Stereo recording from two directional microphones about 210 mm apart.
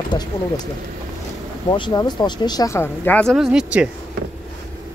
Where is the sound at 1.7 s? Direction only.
20° left (ahead or behind); by 3.9 s 5° right (ahead or behind).